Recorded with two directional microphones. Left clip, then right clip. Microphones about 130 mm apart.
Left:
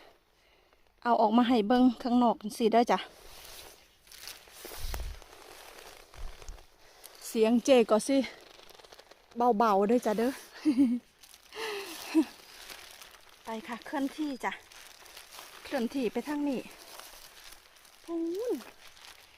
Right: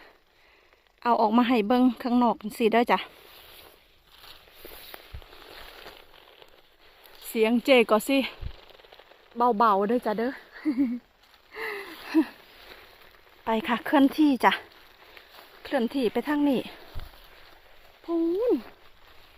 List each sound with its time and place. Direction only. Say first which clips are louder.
1.0 s speech: right 3 dB; 5° right (ahead or behind)
4.6 s walk: left 1 dB; 35° left (ahead or behind)
7.3 s speech: right 3 dB; centre (ahead or behind)
9.4 s speech: right 4 dB; 5° left (ahead or behind); by 10.8 s 20° left (ahead or behind)
11.5 s gasp: right 3 dB; 20° left (ahead or behind)
12.0 s wheeze: right 4 dB; 5° left (ahead or behind)
13.4 s speech: right 13 dB; 50° right (ahead or behind)
15.6 s speech: right 6 dB; 15° right (ahead or behind)
16.4 s speech: right 10 dB; 30° right (ahead or behind)